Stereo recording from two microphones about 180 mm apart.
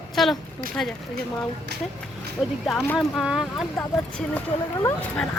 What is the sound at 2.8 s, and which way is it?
Speech, 10° left (ahead or behind).